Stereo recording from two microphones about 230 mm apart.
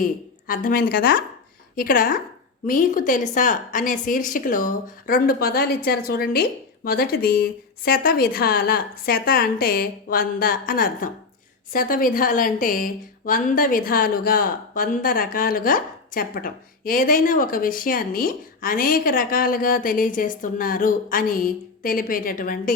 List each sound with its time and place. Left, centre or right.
0.0 s a woman's voice: left